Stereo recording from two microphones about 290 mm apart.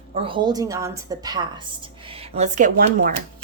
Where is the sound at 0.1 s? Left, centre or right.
Centre.